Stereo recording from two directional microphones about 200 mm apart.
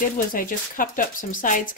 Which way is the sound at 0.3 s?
45° left (ahead or behind).